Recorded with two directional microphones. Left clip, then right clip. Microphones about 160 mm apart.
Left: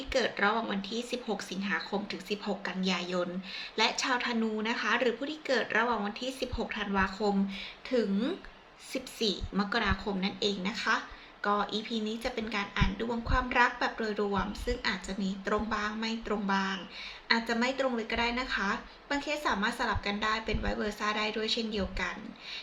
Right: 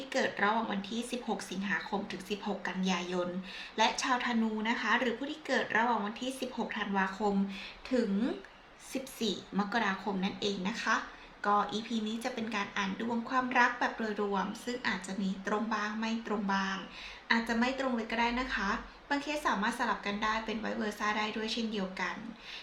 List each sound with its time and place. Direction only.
0.1 s speech: 10° right (ahead or behind)